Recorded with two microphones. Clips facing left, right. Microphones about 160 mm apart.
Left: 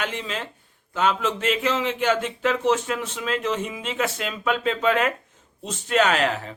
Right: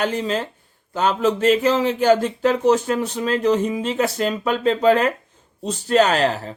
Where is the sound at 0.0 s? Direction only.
40° right (ahead or behind).